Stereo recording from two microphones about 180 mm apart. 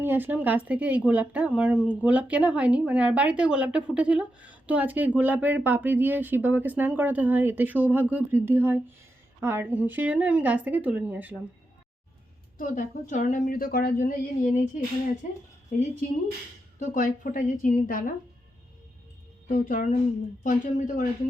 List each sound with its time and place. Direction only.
0.0 s a woman's voice: 10° right (ahead or behind)
12.5 s a woman's voice: 45° left (ahead or behind)
16.8 s a woman's voice: 45° left (ahead or behind)
19.5 s a woman's voice: 50° left (ahead or behind)